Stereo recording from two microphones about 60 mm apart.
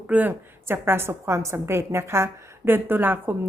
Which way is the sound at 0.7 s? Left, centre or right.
Right.